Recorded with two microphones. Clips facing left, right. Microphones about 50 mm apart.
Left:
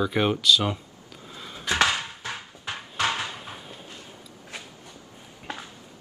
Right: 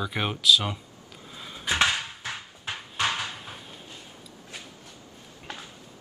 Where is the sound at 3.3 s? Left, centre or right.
Centre.